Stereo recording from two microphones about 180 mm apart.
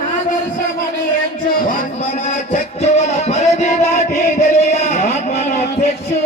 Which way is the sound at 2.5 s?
40° left (ahead or behind).